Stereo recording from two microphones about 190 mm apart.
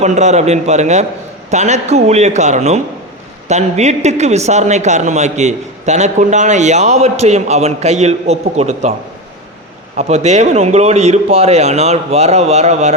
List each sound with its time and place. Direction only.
0.0 s a man's voice: 40° right (ahead or behind)
9.9 s a man's voice: 35° right (ahead or behind)